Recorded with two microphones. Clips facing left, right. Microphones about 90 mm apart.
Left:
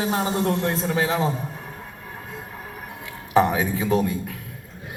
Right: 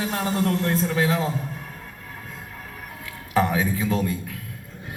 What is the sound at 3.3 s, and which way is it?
Speech, 20° left (ahead or behind).